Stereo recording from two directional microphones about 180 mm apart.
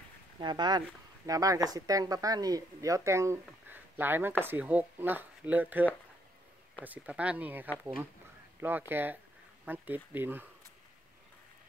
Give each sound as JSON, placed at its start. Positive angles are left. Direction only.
{"t": 0.4, "sound": "speech", "side_deg": -25}